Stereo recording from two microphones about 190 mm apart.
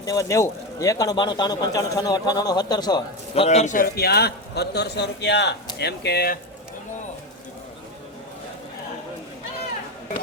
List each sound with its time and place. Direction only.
0.0 s speech: 15° left (ahead or behind)
3.4 s a man's voice: 35° left (ahead or behind); by 6.4 s 55° left (ahead or behind)